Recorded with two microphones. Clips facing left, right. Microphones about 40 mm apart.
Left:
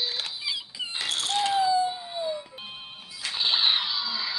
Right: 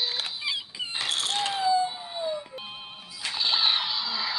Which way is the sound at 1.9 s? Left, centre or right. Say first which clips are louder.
Left 1 dB; centre.